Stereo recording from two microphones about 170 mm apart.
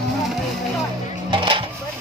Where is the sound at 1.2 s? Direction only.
30° right (ahead or behind).